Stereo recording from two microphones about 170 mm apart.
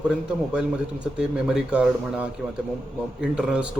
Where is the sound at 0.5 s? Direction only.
5° right (ahead or behind).